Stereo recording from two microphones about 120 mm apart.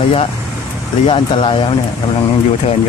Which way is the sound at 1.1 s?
45° left (ahead or behind).